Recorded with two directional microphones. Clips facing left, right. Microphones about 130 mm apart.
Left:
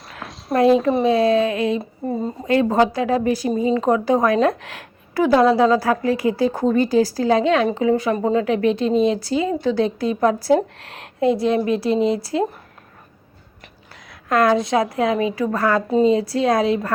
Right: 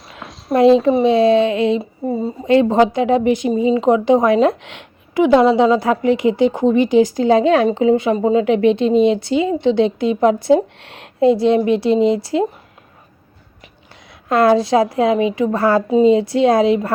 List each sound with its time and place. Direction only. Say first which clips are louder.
0.2 s a sound: even; centre (ahead or behind)
0.5 s speech: right 4 dB; 25° right (ahead or behind)
0.8 s speech: right 4 dB; centre (ahead or behind)
1.0 s speech: right 4 dB; 25° right (ahead or behind)
1.8 s speech: right 3 dB; 10° right (ahead or behind)
2.5 s speech: right 4 dB; 25° right (ahead or behind)
14.1 s a woman's voice: right 4 dB; 30° right (ahead or behind)